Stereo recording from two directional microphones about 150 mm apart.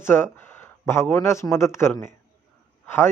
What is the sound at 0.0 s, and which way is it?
Speech, 15° left (ahead or behind).